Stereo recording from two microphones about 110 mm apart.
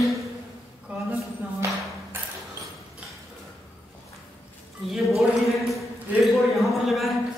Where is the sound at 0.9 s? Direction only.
10° right (ahead or behind).